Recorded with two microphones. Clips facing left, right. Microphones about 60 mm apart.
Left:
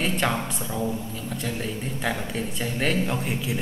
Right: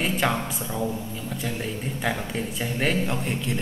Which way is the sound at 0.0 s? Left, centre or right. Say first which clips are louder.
Right 1 dB; centre.